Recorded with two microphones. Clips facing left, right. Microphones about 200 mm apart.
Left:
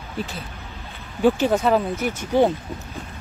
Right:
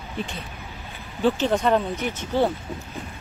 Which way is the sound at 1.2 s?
10° left (ahead or behind).